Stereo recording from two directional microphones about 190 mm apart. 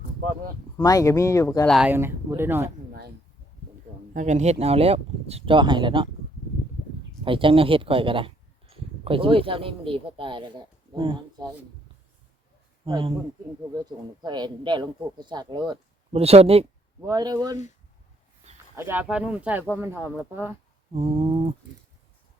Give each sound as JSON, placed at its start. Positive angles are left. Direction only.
{"t": 0.8, "sound": "speech", "side_deg": 15}
{"t": 1.6, "sound": "speech", "side_deg": 0}
{"t": 1.9, "sound": "speech", "side_deg": -10}
{"t": 4.1, "sound": "speech", "side_deg": -40}
{"t": 7.3, "sound": "speech", "side_deg": -25}
{"t": 12.8, "sound": "speech", "side_deg": -30}
{"t": 17.1, "sound": "speech", "side_deg": -20}
{"t": 18.8, "sound": "speech", "side_deg": -10}
{"t": 20.9, "sound": "speech", "side_deg": -30}